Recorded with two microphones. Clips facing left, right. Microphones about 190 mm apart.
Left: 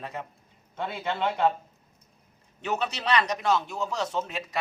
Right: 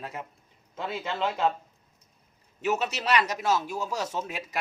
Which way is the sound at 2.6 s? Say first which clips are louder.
Right 1 dB; 5° right (ahead or behind).